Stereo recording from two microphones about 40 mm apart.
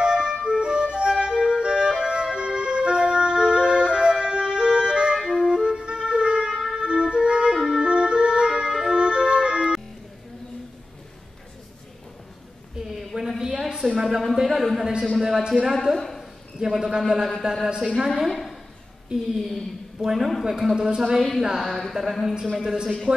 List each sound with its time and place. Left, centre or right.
0.0 s music: right
5.2 s clarinet: centre
6.7 s music: right
12.8 s a sound: centre
15.6 s a man's voice: centre
16.0 s a sound: centre
16.5 s a man's voice: centre
18.0 s a woman's voice: centre
19.1 s a man's voice: centre
21.6 s a man's voice: centre